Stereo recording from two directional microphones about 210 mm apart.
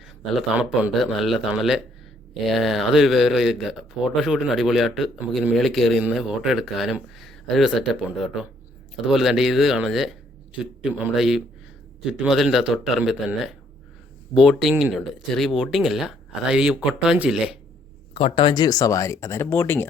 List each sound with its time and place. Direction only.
0.3 s speech: centre (ahead or behind)
18.1 s speech: 25° left (ahead or behind); by 19.9 s 10° left (ahead or behind)